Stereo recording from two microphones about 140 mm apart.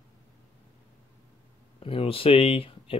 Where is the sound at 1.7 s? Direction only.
40° left (ahead or behind).